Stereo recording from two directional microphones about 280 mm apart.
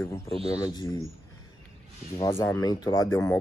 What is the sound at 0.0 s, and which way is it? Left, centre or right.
Speech, centre.